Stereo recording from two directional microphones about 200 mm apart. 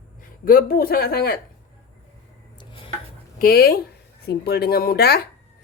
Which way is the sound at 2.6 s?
25° left (ahead or behind).